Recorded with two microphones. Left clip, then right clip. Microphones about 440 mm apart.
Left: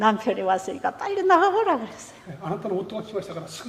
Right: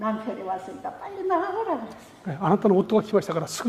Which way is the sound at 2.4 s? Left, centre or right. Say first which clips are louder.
Right 7 dB; right.